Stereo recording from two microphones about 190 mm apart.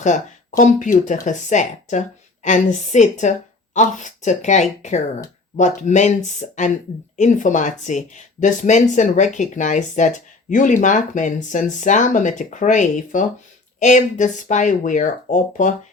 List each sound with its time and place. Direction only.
0.0 s speech: 40° left (ahead or behind)